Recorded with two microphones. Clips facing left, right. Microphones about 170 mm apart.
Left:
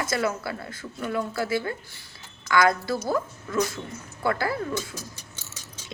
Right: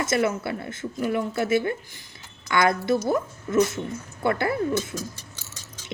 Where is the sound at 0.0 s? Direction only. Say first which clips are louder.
Right 3 dB; 20° right (ahead or behind).